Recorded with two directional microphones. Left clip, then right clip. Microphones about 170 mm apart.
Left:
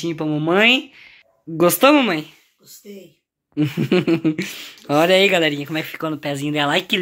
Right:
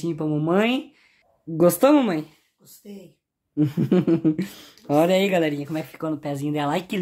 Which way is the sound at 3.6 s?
10° right (ahead or behind).